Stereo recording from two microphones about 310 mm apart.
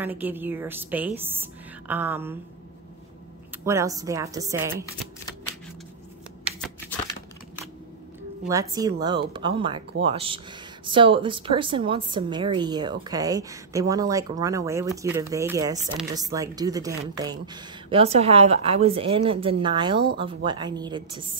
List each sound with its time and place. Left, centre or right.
0.0 s a woman's voice: centre
3.6 s a woman's voice: centre
8.5 s a woman's voice: centre